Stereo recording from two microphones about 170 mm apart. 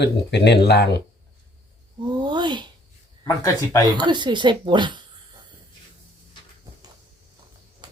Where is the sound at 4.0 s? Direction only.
25° right (ahead or behind).